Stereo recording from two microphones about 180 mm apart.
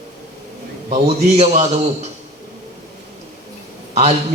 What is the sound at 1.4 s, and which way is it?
Speech, 35° right (ahead or behind).